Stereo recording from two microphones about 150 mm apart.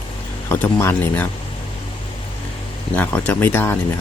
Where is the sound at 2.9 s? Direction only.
10° left (ahead or behind).